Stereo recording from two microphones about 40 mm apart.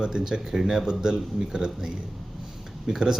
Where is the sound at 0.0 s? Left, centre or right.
Centre.